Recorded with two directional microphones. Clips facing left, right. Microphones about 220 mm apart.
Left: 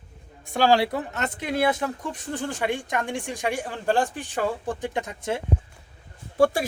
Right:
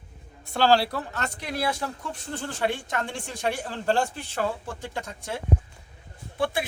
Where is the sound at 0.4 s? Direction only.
15° left (ahead or behind).